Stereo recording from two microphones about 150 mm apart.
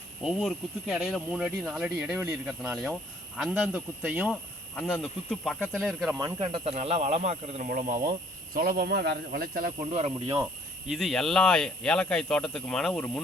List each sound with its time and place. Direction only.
0.2 s speech: 5° right (ahead or behind)
4.7 s speech: 10° left (ahead or behind)
6.4 s speech: 40° right (ahead or behind)
7.7 s speech: 60° right (ahead or behind)
8.5 s speech: 80° right
9.9 s speech: 45° right (ahead or behind)
10.8 s speech: centre (ahead or behind)